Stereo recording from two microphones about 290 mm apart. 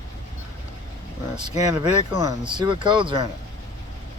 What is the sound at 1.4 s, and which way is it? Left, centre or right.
Speech, centre.